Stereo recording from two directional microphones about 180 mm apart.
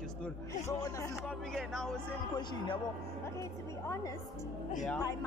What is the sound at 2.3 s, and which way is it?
Speech, 25° left (ahead or behind).